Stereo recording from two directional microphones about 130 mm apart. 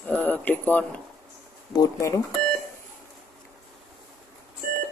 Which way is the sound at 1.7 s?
25° left (ahead or behind).